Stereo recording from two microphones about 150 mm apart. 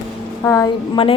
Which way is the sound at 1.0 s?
35° left (ahead or behind).